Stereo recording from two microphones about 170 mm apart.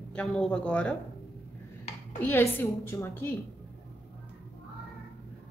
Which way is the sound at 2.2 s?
15° left (ahead or behind).